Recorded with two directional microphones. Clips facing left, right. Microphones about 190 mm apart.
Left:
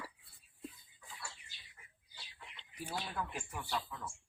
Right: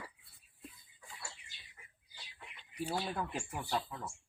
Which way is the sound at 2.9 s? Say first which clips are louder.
Right 3 dB; 30° right (ahead or behind).